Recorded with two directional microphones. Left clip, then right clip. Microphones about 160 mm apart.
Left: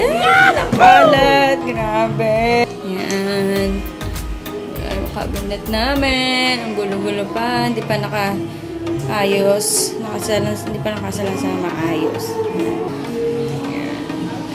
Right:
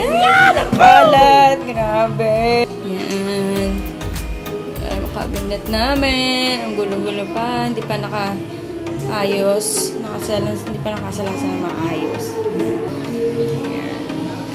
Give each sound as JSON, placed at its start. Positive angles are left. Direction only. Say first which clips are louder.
{"t": 0.0, "sound": "a sound", "louder": "even", "side_deg": 0}
{"t": 5.5, "sound": "music", "louder": "right 1 dB", "side_deg": -15}
{"t": 6.7, "sound": "speech", "louder": "even", "side_deg": 5}